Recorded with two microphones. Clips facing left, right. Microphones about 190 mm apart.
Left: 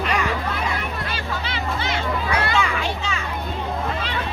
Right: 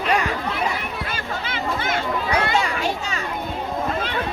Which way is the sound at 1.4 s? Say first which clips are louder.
Right 3 dB; 50° right (ahead or behind).